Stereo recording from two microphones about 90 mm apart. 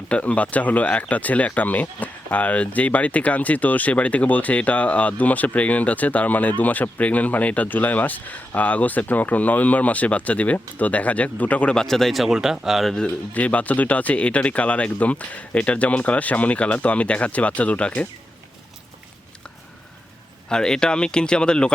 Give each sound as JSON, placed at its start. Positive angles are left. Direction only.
{"t": 0.1, "sound": "speech", "side_deg": 15}
{"t": 12.9, "sound": "speech", "side_deg": 15}
{"t": 20.5, "sound": "speech", "side_deg": 10}